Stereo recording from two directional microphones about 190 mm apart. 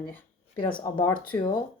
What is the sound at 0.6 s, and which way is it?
Speech, 25° left (ahead or behind).